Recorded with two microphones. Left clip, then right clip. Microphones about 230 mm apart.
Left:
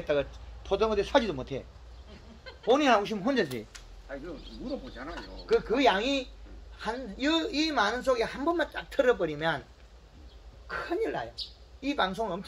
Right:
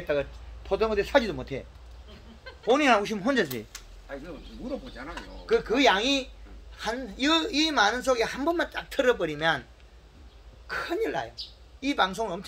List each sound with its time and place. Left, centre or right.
0.0 s a man's voice: centre
2.6 s speech: centre
5.5 s speech: right
10.7 s speech: right